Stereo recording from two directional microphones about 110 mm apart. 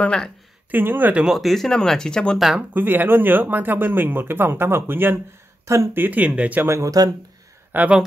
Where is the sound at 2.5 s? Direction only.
15° right (ahead or behind).